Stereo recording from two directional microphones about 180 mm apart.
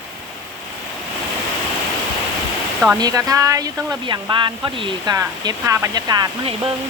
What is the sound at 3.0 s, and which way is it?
Speech, 20° right (ahead or behind).